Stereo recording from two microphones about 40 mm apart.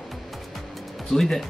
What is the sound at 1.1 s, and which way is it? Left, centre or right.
Speech, centre.